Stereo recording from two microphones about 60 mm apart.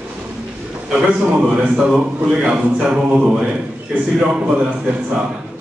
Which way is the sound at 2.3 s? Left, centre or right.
Centre.